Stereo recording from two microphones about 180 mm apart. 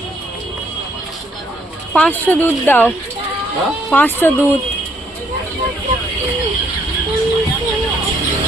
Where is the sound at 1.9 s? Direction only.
10° left (ahead or behind).